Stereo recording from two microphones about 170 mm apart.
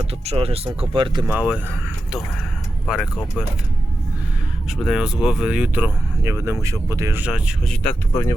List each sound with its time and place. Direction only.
0.3 s speech: 35° right (ahead or behind)
1.3 s speech: 10° right (ahead or behind)
2.8 s speech: centre (ahead or behind)
4.7 s speech: 5° right (ahead or behind)
8.1 s speech: 15° left (ahead or behind)